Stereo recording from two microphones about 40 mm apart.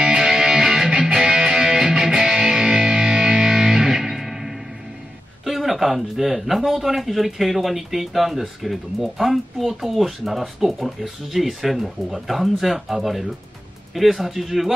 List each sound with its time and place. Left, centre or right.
0.0 s music: centre
5.4 s a man's voice: centre